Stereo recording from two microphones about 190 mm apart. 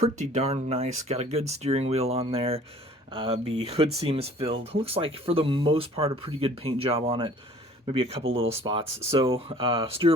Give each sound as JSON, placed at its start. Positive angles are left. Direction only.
{"t": 0.0, "sound": "speech", "side_deg": -35}